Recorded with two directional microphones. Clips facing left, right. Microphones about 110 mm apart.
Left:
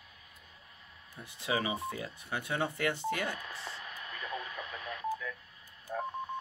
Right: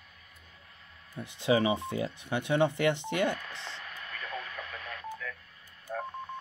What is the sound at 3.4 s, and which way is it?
Radio, 10° left (ahead or behind).